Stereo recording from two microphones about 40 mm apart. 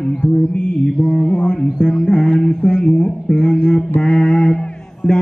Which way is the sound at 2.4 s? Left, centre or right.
Centre.